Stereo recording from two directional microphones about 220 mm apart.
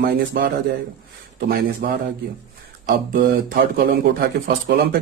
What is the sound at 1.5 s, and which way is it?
Speech, 40° right (ahead or behind).